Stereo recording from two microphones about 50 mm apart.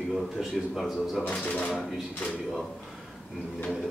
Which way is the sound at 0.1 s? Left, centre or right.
Centre.